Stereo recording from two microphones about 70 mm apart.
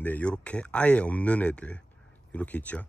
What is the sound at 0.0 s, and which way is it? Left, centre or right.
Speech, left.